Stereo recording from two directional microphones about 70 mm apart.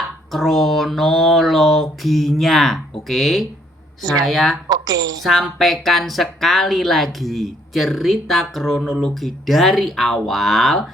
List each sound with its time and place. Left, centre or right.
0.3 s a woman's voice: centre
4.7 s a woman's voice: right
5.2 s a woman's voice: centre